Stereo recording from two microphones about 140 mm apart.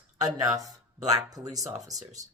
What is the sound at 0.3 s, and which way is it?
Speech, 25° right (ahead or behind).